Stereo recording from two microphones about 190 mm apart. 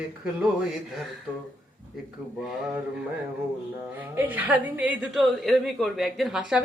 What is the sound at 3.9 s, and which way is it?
A woman's voice, 10° right (ahead or behind).